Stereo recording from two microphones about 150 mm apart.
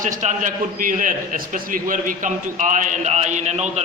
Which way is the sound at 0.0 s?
55° right (ahead or behind).